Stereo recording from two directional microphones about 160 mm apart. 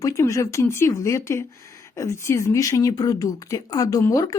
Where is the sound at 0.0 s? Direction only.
20° left (ahead or behind).